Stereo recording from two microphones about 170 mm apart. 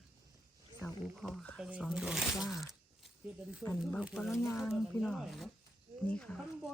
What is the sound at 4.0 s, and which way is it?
Speech, 5° right (ahead or behind).